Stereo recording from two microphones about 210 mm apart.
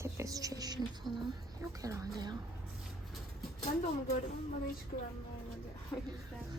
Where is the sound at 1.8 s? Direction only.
15° right (ahead or behind).